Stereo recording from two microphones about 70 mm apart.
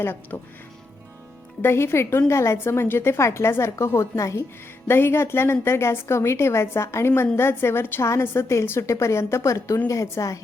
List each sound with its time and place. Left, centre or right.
0.0 s a woman's voice: left
1.6 s a woman's voice: left
4.2 s a woman's voice: left
4.9 s a woman's voice: left